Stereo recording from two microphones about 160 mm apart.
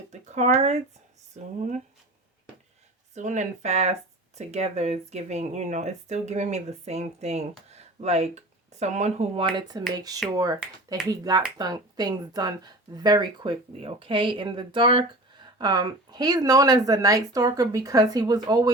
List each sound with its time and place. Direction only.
0.1 s speech: 45° right (ahead or behind)
3.2 s speech: 50° right (ahead or behind); by 18.7 s 25° right (ahead or behind)